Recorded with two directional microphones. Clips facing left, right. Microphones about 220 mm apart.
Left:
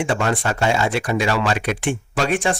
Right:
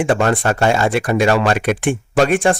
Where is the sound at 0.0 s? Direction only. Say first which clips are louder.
Right 5 dB; 50° right (ahead or behind).